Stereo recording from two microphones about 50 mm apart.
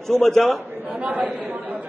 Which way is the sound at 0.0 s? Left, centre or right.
Centre.